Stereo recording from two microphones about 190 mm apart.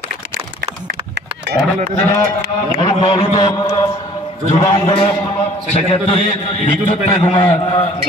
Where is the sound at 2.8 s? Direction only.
35° left (ahead or behind).